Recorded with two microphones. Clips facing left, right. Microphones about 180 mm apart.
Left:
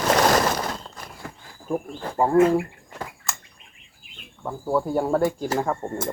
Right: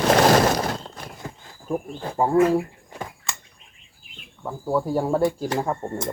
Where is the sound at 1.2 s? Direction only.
25° right (ahead or behind).